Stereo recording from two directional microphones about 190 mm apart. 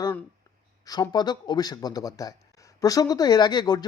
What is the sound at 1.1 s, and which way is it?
Speech, 20° left (ahead or behind).